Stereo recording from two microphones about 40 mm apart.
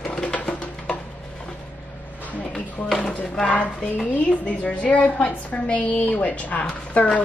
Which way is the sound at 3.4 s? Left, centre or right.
Left.